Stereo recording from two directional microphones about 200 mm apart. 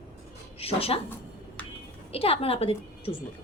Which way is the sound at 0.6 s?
30° left (ahead or behind).